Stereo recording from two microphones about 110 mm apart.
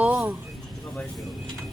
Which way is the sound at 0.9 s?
Centre (ahead or behind).